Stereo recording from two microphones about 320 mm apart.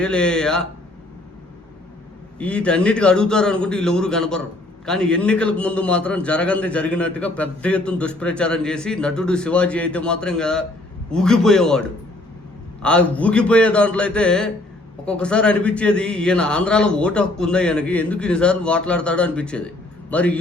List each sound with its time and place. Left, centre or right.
0.0 s a man's voice: centre
2.4 s a man's voice: centre